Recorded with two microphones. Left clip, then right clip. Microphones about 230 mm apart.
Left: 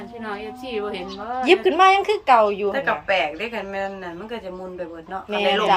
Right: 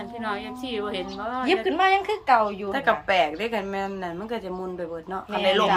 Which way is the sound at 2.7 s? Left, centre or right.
Right.